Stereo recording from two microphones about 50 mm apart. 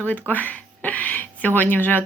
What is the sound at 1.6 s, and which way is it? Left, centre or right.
Speech, left.